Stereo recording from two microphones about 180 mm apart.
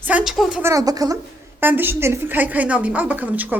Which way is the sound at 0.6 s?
20° right (ahead or behind).